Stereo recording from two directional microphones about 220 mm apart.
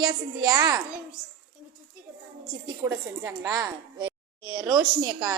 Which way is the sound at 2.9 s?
15° right (ahead or behind).